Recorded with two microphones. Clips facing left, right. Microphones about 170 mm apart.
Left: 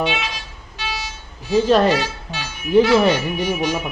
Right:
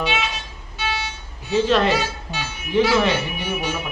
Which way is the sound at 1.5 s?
40° left (ahead or behind).